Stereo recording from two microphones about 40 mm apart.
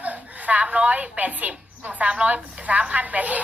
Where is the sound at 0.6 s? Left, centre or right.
Right.